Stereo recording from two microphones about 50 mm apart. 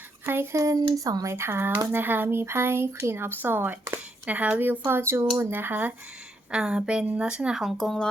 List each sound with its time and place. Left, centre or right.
0.5 s speech: right
1.9 s speech: right
4.3 s speech: right
5.4 s speech: right
6.5 s speech: centre
7.6 s speech: centre